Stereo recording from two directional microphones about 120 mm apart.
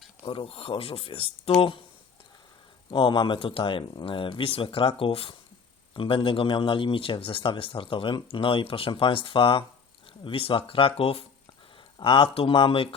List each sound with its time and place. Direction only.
0.3 s a man's voice: 50° left (ahead or behind)
2.9 s a man's voice: 40° left (ahead or behind)